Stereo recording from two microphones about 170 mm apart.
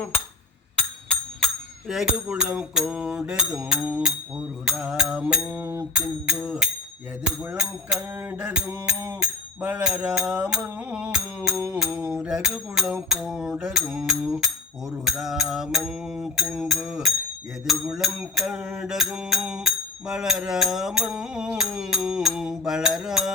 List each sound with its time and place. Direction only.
1.9 s music: 5° right (ahead or behind)